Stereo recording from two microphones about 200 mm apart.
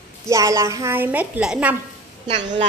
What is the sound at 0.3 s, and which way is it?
A woman's voice, 15° right (ahead or behind).